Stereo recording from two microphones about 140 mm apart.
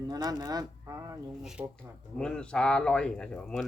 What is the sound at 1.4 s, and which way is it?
Speech, 5° right (ahead or behind).